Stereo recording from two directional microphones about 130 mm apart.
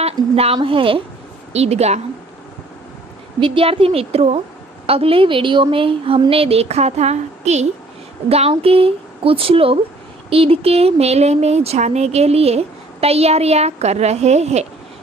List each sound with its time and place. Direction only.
0.0 s a woman's voice: 50° right (ahead or behind)
1.5 s a woman's voice: 55° right (ahead or behind)
3.3 s a woman's voice: 40° right (ahead or behind); by 14.7 s 55° right (ahead or behind)